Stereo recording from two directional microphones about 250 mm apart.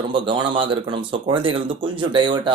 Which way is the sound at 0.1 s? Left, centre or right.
Centre.